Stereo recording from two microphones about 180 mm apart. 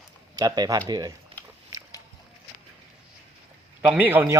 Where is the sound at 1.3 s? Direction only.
30° right (ahead or behind).